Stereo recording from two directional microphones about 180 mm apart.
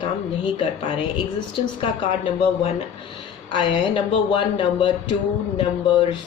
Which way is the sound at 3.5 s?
25° left (ahead or behind).